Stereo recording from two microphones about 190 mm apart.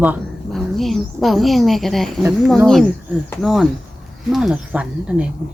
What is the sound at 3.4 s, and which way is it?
Speech, centre (ahead or behind).